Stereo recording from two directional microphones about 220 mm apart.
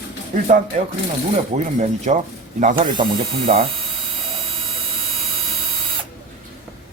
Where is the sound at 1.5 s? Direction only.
30° right (ahead or behind).